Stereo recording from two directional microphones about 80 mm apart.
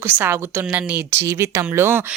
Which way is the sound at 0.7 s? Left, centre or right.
Centre.